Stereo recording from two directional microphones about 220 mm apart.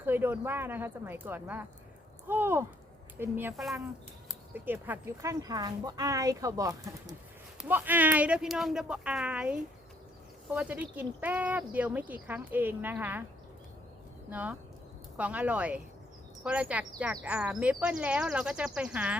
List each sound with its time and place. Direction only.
0.0 s speech: 10° right (ahead or behind)
14.3 s speech: 5° right (ahead or behind)